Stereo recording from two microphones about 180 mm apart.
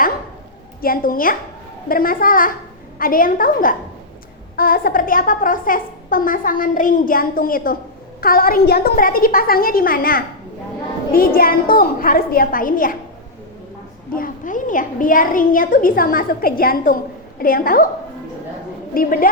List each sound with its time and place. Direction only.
0.8 s a woman's voice: 55° left (ahead or behind)
14.2 s a woman's voice: 45° left (ahead or behind)
18.9 s a woman's voice: 50° left (ahead or behind)